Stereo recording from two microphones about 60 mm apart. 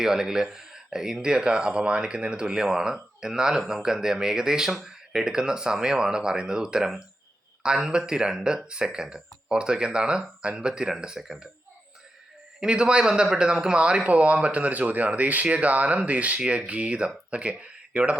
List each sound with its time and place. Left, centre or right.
0.0 s speech: centre
12.5 s speech: centre